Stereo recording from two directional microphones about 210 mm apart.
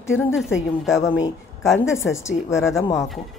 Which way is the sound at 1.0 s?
15° left (ahead or behind).